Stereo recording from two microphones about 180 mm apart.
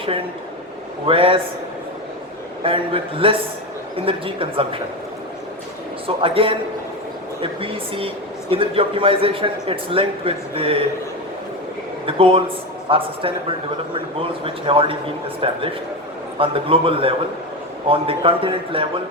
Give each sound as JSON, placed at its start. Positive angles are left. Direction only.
{"t": 1.0, "sound": "speech", "side_deg": -30}
{"t": 2.6, "sound": "speech", "side_deg": -30}
{"t": 6.2, "sound": "speech", "side_deg": -30}
{"t": 12.0, "sound": "speech", "side_deg": -30}